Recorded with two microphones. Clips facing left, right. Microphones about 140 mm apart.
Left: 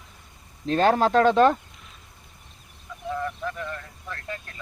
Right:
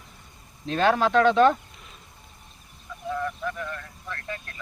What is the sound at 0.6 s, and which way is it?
Speech, 40° left (ahead or behind).